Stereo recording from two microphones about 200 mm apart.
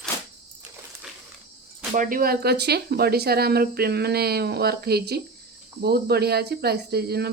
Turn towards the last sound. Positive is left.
turn(degrees=-50)  # may be behind; listen again after turning